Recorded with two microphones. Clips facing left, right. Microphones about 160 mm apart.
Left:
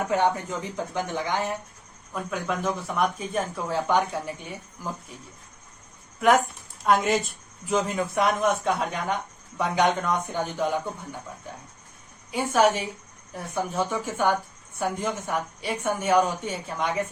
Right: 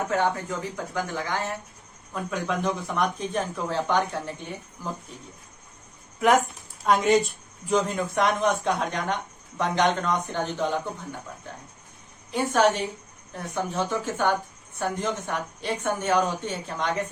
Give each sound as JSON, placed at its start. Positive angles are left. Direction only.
{"t": 0.1, "sound": "a woman's voice", "side_deg": 15}
{"t": 2.3, "sound": "a woman's voice", "side_deg": 0}
{"t": 6.1, "sound": "a woman's voice", "side_deg": 0}
{"t": 12.3, "sound": "a woman's voice", "side_deg": 10}